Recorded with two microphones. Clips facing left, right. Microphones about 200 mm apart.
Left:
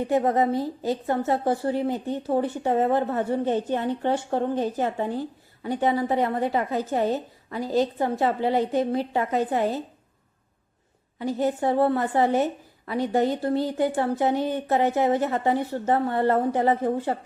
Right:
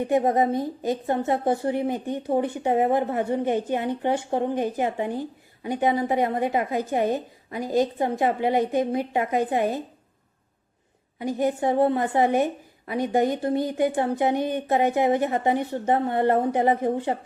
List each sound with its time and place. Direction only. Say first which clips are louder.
0.0 s a woman's voice: right 1 dB; 20° right (ahead or behind)
11.2 s a woman's voice: even; 15° right (ahead or behind)